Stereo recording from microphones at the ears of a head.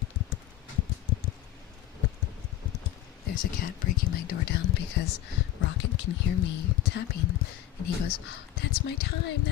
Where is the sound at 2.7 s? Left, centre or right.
Left.